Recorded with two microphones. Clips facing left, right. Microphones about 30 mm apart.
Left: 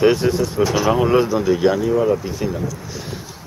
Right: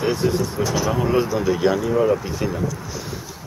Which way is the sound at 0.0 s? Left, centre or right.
Left.